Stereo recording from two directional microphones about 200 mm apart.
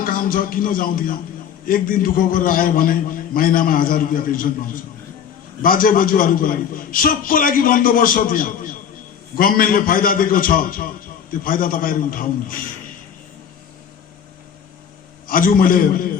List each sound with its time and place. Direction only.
0.0 s a man's voice: 45° left (ahead or behind)
15.3 s a man's voice: 45° left (ahead or behind)